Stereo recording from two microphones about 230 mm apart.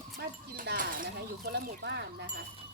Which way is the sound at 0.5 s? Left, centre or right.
Right.